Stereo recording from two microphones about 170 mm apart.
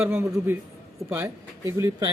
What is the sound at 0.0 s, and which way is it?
Speech, 10° right (ahead or behind).